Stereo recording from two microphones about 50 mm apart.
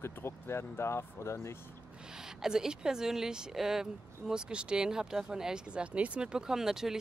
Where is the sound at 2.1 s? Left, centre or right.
Centre.